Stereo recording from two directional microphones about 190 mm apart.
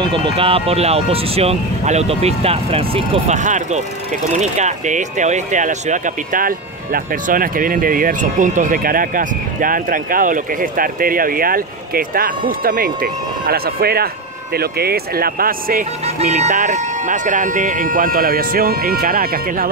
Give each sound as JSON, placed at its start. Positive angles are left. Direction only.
{"t": 0.0, "sound": "speech", "side_deg": -25}
{"t": 16.2, "sound": "speech", "side_deg": -40}